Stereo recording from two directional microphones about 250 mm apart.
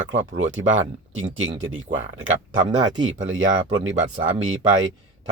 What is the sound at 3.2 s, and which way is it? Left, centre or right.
Speech, right.